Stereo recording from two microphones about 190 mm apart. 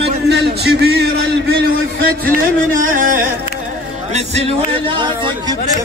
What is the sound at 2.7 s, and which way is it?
Music, 45° right (ahead or behind).